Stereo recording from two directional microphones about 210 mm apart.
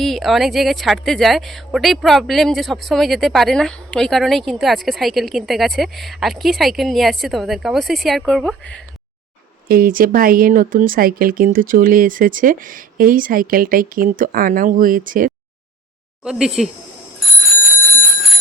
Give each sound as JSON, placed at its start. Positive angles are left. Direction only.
{"t": 0.0, "sound": "a woman's voice", "side_deg": 0}
{"t": 9.6, "sound": "speech", "side_deg": -45}
{"t": 16.2, "sound": "a woman's voice", "side_deg": 0}